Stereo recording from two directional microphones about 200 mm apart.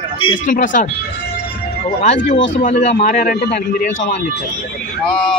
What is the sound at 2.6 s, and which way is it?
Speech, 40° left (ahead or behind).